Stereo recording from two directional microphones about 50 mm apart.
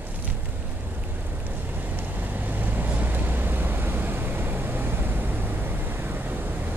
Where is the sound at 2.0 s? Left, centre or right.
Right.